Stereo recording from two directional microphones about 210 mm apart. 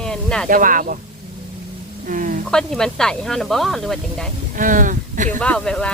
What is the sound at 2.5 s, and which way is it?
Speech, 5° left (ahead or behind).